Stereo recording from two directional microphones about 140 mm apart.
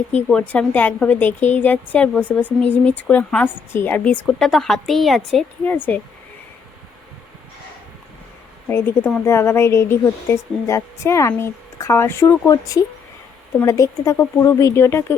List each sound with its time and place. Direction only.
0.3 s speech: 10° left (ahead or behind)
5.6 s speech: 15° left (ahead or behind)
8.7 s a woman's voice: 10° left (ahead or behind)